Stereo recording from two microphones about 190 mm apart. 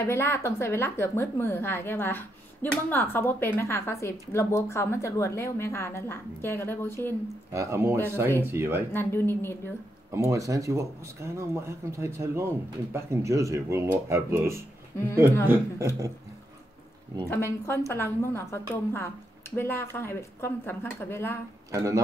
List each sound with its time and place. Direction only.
0.0 s a woman's voice: 15° left (ahead or behind)
7.5 s speech: 15° right (ahead or behind)
8.9 s a woman's voice: 10° left (ahead or behind)
10.1 s speech: 15° right (ahead or behind)
17.3 s a woman's voice: 15° left (ahead or behind)
21.7 s speech: 15° right (ahead or behind)